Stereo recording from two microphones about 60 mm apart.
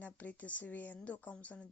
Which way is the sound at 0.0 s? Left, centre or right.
Left.